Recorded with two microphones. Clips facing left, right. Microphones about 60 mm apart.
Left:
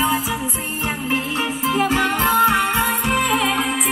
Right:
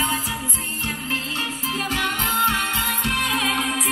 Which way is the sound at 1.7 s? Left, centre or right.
Left.